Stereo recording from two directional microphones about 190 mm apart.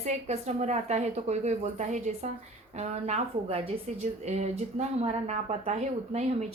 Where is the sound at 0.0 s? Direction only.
35° right (ahead or behind).